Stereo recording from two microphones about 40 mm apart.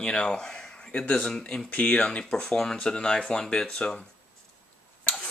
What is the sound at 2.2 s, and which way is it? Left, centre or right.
Speech, centre.